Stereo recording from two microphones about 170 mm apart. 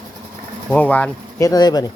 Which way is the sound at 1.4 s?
25° left (ahead or behind).